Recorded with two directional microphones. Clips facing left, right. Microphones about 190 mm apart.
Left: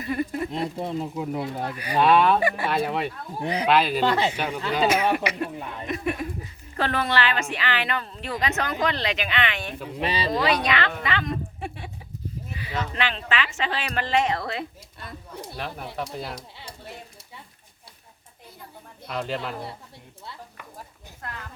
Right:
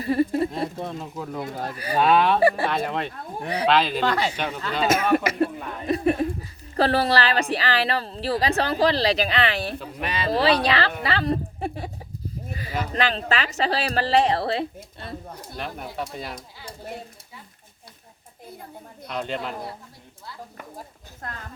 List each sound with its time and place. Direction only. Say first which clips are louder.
0.0 s speech: right 6 dB; 35° right (ahead or behind)
0.8 s speech: left 3 dB; 10° left (ahead or behind)
1.7 s speech: right 2 dB; 40° right (ahead or behind)
2.0 s speech: left 1 dB; centre (ahead or behind)
2.4 s speech: right 6 dB; 35° right (ahead or behind)
2.6 s speech: left 1 dB; 10° left (ahead or behind)
5.1 s speech: right 6 dB; 40° right (ahead or behind)
10.0 s speech: left 3 dB; 30° left (ahead or behind)
10.3 s a woman's voice: right 5 dB; 30° right (ahead or behind)
12.5 s a sound: right 2 dB; 40° right (ahead or behind)
12.9 s speech: right 6 dB; 40° right (ahead or behind)
15.5 s speech: right 1 dB; centre (ahead or behind)
19.0 s speech: even; centre (ahead or behind)
20.6 s a sound: right 4 dB; 40° right (ahead or behind)